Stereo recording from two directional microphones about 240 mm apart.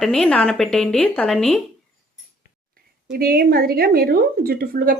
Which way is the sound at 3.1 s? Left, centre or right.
Right.